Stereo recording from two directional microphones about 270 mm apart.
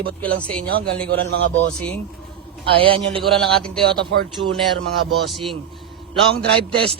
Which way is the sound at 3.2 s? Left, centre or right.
Centre.